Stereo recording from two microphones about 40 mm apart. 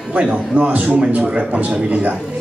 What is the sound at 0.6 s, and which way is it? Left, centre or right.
A man's voice, right.